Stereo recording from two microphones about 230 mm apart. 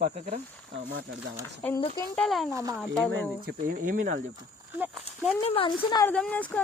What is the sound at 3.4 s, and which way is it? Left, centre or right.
Speech, right.